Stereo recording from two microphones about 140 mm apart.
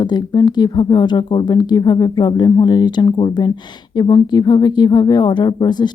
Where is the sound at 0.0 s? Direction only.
30° left (ahead or behind).